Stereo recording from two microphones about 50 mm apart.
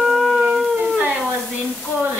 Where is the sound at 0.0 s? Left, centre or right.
Centre.